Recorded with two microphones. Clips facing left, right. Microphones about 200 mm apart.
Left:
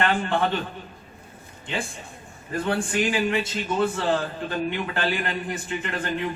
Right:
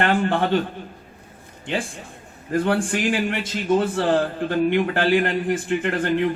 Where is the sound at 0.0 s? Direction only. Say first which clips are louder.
Right 3 dB; 50° right (ahead or behind).